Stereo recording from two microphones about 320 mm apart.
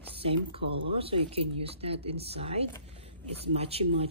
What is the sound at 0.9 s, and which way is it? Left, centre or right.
Speech, centre.